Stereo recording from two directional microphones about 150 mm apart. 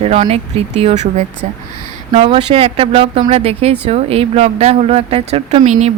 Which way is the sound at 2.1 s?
35° right (ahead or behind).